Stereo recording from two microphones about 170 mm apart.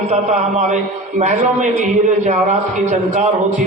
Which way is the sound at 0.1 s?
40° right (ahead or behind).